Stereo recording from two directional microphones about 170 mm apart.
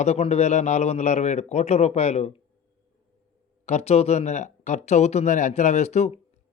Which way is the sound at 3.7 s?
40° left (ahead or behind).